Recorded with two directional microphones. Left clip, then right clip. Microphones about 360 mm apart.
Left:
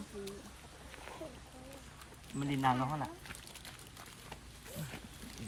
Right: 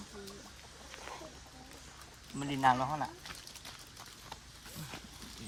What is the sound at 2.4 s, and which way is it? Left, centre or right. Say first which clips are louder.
Speech: right 4 dB; centre.